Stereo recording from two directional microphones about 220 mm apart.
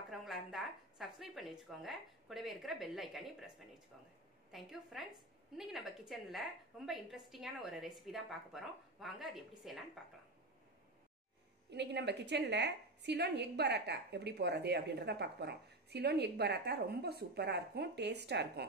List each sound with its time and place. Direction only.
0.1 s a woman's voice: centre (ahead or behind)
11.7 s a woman's voice: 50° right (ahead or behind)